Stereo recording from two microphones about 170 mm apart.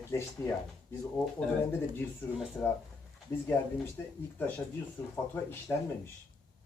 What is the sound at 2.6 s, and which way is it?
Speech, 10° left (ahead or behind).